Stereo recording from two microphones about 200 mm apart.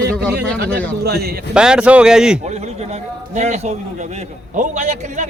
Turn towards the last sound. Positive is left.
turn(degrees=-40)  # may be behind; listen again after turning